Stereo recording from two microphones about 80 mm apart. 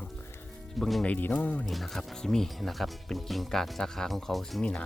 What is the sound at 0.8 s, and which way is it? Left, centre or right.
Speech, centre.